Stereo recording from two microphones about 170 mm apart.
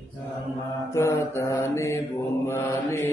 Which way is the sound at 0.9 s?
15° left (ahead or behind).